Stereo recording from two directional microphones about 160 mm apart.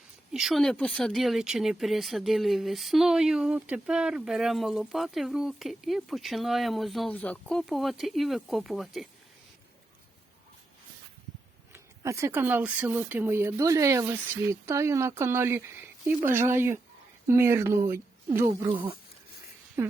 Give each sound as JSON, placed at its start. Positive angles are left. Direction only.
{"t": 0.3, "sound": "speech", "side_deg": 0}
{"t": 11.7, "sound": "speech", "side_deg": -20}
{"t": 18.4, "sound": "speech", "side_deg": -30}
{"t": 19.8, "sound": "speech", "side_deg": -15}